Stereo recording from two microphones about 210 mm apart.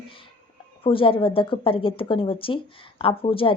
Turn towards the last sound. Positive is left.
turn(degrees=25)  # may be behind; listen again after turning